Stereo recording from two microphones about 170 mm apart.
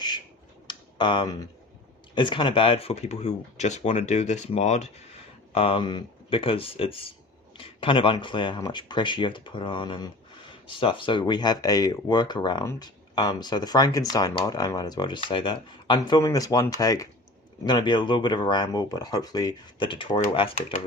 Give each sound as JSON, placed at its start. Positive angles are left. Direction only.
{"t": 0.7, "sound": "computer keyboard", "side_deg": 30}
{"t": 2.1, "sound": "speech", "side_deg": 30}